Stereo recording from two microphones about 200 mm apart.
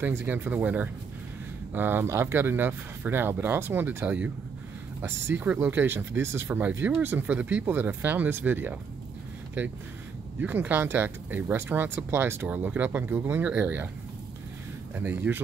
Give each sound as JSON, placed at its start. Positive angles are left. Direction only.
{"t": 0.0, "sound": "speech", "side_deg": -10}
{"t": 10.4, "sound": "speech", "side_deg": -10}
{"t": 15.0, "sound": "speech", "side_deg": -10}